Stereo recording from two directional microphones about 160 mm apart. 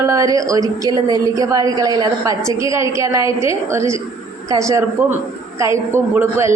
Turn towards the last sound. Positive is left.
turn(degrees=-15)  # may be behind; listen again after turning